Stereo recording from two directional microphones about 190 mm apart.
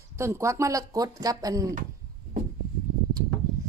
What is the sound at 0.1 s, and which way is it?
Speech, 15° right (ahead or behind).